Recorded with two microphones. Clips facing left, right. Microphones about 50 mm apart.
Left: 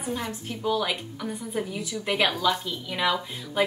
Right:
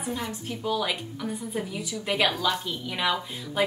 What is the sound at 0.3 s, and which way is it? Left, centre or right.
A woman's voice, centre.